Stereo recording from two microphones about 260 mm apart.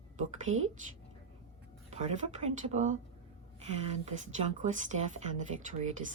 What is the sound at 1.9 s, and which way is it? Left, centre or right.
Speech, right.